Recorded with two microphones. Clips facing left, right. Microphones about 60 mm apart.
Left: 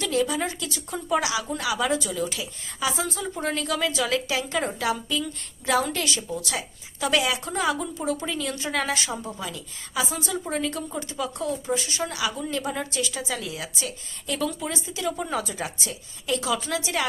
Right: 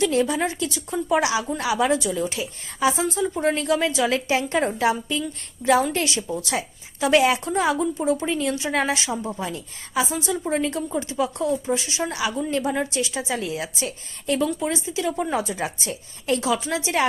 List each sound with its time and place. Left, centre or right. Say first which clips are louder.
0.1 s a woman's voice: right 3 dB; right
10.8 s speech: right 6 dB; centre
11.2 s a woman's voice: right 5 dB; right
14.3 s speech: right 4 dB; right
15.8 s a woman's voice: right 4 dB; right
16.5 s speech: right 3 dB; right